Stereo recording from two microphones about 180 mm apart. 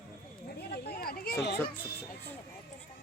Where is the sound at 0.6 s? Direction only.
60° left (ahead or behind).